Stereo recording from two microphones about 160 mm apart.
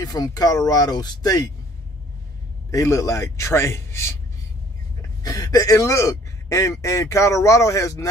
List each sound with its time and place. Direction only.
0.0 s speech: 25° left (ahead or behind)
2.7 s a man's voice: 20° left (ahead or behind)
5.2 s speech: 25° left (ahead or behind)